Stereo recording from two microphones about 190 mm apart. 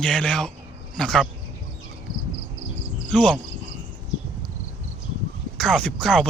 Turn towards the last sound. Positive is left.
turn(degrees=5)  # may be behind; listen again after turning